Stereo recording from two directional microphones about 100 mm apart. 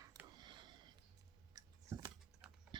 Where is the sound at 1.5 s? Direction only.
30° right (ahead or behind).